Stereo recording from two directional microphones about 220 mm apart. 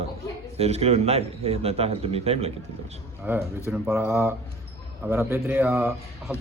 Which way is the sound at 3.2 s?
5° right (ahead or behind).